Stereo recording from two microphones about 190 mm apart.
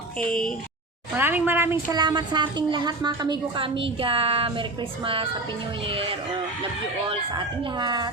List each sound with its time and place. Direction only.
0.2 s speech: 5° left (ahead or behind)
1.1 s a woman's voice: 10° right (ahead or behind)